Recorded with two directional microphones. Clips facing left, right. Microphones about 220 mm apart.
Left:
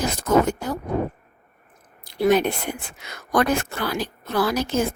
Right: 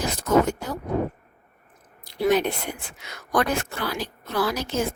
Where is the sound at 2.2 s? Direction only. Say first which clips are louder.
Left 3 dB; 50° left (ahead or behind).